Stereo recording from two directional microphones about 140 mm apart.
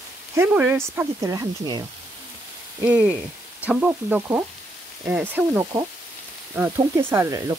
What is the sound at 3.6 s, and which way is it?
Speech, 10° right (ahead or behind).